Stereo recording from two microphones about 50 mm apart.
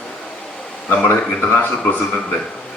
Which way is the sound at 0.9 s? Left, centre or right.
Left.